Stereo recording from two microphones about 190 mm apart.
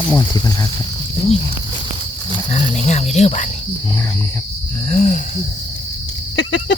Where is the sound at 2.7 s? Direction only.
35° left (ahead or behind).